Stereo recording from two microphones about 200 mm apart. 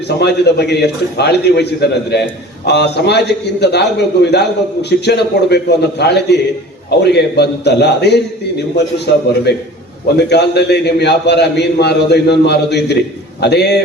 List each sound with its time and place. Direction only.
0.2 s a man's voice: 55° left (ahead or behind)